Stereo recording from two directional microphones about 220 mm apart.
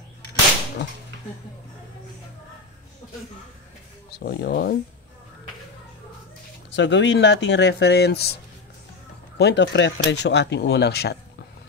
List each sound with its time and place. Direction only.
4.1 s speech: 45° left (ahead or behind)
6.7 s speech: 55° left (ahead or behind)
9.4 s speech: 50° left (ahead or behind)